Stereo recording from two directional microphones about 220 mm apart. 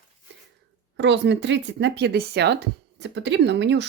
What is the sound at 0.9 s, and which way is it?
Speech, 50° right (ahead or behind).